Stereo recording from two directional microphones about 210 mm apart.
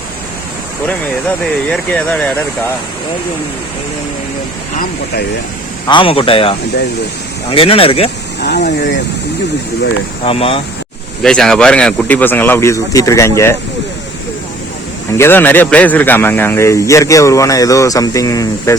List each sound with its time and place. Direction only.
1.7 s speech: 5° left (ahead or behind)
5.9 s speech: 25° left (ahead or behind)
8.4 s speech: 50° left (ahead or behind)
10.2 s speech: 25° left (ahead or behind)
11.2 s speech: 5° left (ahead or behind)
15.2 s speech: 10° left (ahead or behind)